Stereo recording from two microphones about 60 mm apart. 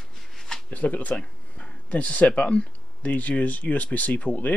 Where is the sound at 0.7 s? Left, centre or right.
Left.